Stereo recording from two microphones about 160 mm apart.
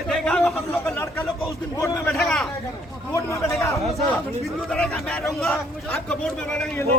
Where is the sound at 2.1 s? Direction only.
Centre (ahead or behind).